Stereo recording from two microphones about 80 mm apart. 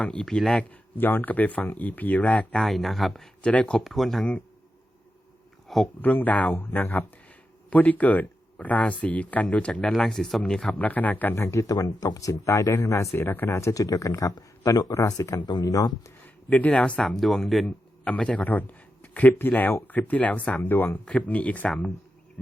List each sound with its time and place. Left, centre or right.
0.0 s speech: centre
0.9 s speech: left
2.6 s speech: centre
3.4 s speech: centre
3.8 s speech: centre
5.6 s speech: centre
6.0 s speech: left
10.8 s speech: centre
11.3 s speech: left
13.1 s speech: left
15.4 s speech: left
15.6 s speech: left
16.2 s speech: centre
18.0 s a man's voice: centre